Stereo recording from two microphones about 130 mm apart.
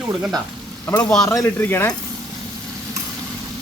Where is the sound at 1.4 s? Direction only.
15° left (ahead or behind).